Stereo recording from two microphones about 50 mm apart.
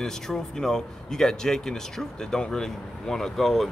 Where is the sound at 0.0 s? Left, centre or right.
Centre.